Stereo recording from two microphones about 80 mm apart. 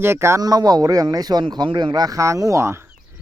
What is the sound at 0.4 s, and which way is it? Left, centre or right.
Speech, right.